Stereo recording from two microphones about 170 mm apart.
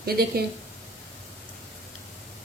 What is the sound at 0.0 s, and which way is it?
Speech, 65° right (ahead or behind).